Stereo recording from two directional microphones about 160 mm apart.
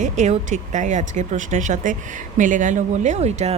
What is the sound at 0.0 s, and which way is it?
Speech, 50° right (ahead or behind).